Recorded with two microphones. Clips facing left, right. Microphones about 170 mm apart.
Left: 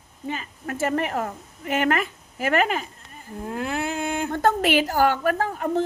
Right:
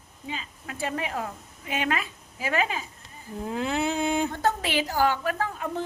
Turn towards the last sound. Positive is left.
turn(degrees=45)  # may be behind; listen again after turning